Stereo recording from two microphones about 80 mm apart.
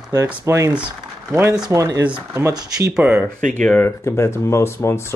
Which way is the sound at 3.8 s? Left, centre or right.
Left.